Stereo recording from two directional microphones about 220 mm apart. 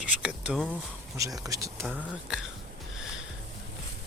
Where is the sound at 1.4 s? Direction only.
15° right (ahead or behind).